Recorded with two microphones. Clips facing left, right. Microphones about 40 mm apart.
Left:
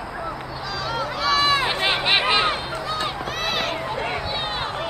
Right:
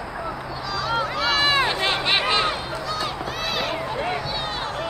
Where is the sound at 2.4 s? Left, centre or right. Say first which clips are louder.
Left 1 dB; left.